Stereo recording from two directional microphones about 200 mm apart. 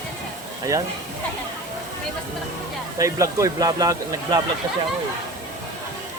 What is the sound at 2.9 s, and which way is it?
Speech, 15° right (ahead or behind).